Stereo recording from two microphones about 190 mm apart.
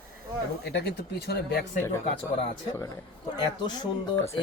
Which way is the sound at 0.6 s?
60° left (ahead or behind).